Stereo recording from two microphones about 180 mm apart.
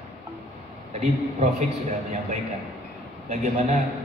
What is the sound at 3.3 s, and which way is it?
Speech, 40° right (ahead or behind).